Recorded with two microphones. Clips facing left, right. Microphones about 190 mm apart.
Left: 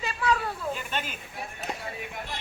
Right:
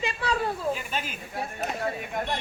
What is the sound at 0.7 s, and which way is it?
Snake, 5° right (ahead or behind).